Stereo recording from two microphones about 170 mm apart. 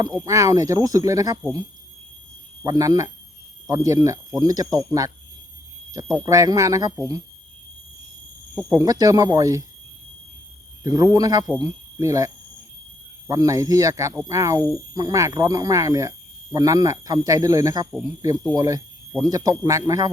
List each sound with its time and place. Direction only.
0.3 s speech: 20° right (ahead or behind)
2.6 s speech: 20° right (ahead or behind)
8.7 s speech: 20° right (ahead or behind)
10.8 s speech: 20° right (ahead or behind)